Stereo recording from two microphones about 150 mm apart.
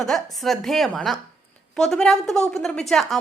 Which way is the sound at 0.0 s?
Centre (ahead or behind).